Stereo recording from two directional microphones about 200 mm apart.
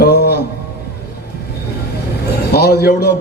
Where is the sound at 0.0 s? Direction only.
55° left (ahead or behind).